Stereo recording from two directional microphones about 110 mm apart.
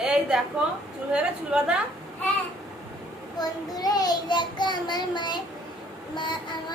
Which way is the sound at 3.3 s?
35° left (ahead or behind).